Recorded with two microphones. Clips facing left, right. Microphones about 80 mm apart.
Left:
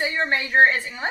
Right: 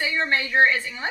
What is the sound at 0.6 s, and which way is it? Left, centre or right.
Speech, left.